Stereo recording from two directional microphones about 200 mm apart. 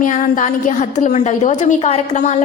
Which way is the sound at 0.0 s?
40° left (ahead or behind).